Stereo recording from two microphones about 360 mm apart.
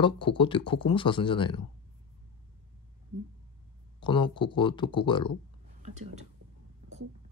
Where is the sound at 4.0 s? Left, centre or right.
Centre.